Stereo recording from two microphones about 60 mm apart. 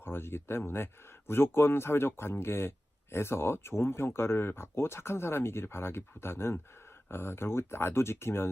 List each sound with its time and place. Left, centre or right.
0.0 s speech: left